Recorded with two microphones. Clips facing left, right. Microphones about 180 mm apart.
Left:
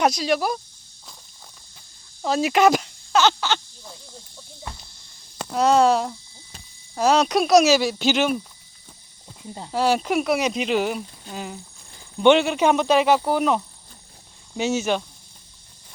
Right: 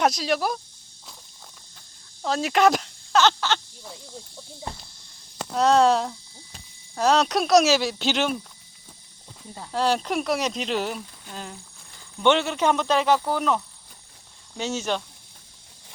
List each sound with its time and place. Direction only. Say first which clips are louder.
0.0 s speech: left 2 dB; centre (ahead or behind)
2.2 s a sound: left 2 dB; 5° left (ahead or behind)
4.7 s speech: right 2 dB; 35° right (ahead or behind)
5.5 s speech: left 1 dB; centre (ahead or behind)
9.7 s speech: left 3 dB; 5° left (ahead or behind)
11.9 s speech: left 5 dB; 25° left (ahead or behind); by 15.0 s 10° left (ahead or behind)